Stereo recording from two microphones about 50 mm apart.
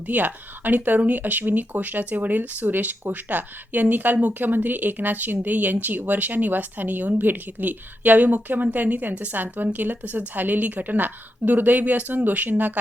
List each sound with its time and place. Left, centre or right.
0.1 s speech: right